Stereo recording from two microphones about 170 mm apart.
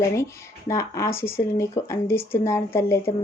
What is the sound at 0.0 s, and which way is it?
A woman's voice, 15° left (ahead or behind).